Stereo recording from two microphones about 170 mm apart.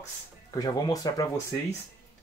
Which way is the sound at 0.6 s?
20° left (ahead or behind).